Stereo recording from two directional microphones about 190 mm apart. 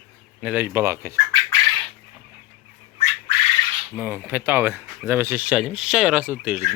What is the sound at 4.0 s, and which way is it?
Speech, 10° right (ahead or behind).